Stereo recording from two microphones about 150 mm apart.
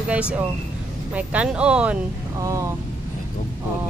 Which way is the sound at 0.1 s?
10° right (ahead or behind).